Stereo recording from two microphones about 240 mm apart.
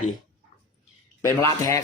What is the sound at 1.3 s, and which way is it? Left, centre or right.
Speech, centre.